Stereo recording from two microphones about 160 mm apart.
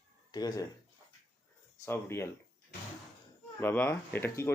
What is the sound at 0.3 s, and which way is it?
Speech, 25° left (ahead or behind).